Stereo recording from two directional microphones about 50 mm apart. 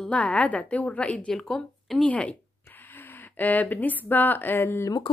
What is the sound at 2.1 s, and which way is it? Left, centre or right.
Speech, left.